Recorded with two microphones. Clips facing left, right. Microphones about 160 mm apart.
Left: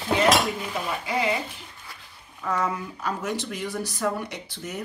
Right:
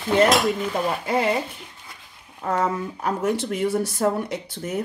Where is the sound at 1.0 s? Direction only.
50° right (ahead or behind).